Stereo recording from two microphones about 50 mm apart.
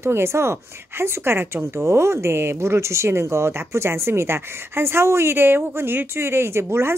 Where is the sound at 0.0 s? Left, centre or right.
Right.